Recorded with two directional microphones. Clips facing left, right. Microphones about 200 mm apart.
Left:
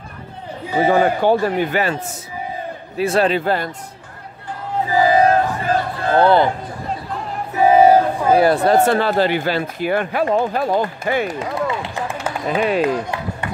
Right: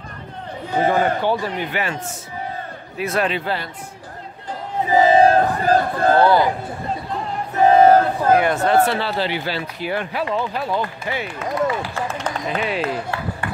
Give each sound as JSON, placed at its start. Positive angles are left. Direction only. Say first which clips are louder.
{"t": 0.9, "sound": "speech", "louder": "left 4 dB", "side_deg": 50}
{"t": 3.0, "sound": "a man's voice", "louder": "left 5 dB", "side_deg": 30}
{"t": 4.8, "sound": "battle cry", "louder": "right 1 dB", "side_deg": -20}
{"t": 5.8, "sound": "a man's voice", "louder": "right 4 dB", "side_deg": -45}
{"t": 6.1, "sound": "speech", "louder": "left 3 dB", "side_deg": 25}
{"t": 7.5, "sound": "speech", "louder": "left 1 dB", "side_deg": 10}
{"t": 8.4, "sound": "speech", "louder": "left 3 dB", "side_deg": 35}
{"t": 12.4, "sound": "speech", "louder": "left 7 dB", "side_deg": 45}
{"t": 12.8, "sound": "speech", "louder": "left 4 dB", "side_deg": 15}